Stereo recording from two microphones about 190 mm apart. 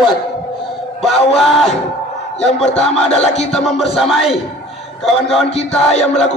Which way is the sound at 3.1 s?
35° left (ahead or behind).